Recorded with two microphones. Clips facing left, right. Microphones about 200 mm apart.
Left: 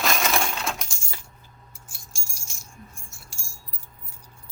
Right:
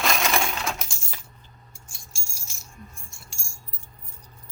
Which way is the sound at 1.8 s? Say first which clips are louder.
Left 1 dB; centre (ahead or behind).